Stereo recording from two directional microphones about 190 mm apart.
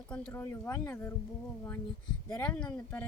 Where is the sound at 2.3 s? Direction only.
5° left (ahead or behind).